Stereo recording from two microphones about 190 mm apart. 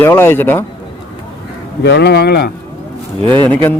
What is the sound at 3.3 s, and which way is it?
Speech, 10° left (ahead or behind).